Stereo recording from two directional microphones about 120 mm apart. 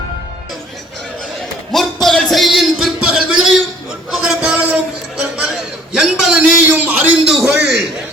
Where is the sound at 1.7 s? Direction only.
5° left (ahead or behind).